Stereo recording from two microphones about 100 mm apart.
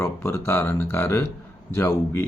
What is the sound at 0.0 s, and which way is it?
Speech, 25° left (ahead or behind).